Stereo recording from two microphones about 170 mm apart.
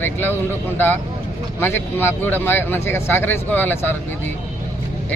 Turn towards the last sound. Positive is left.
turn(degrees=10)  # may be behind; listen again after turning